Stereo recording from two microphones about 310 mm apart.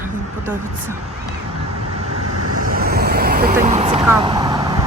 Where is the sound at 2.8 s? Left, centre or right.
Right.